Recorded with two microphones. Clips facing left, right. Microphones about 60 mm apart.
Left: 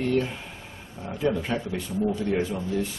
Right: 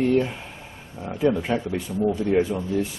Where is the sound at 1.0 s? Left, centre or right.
Centre.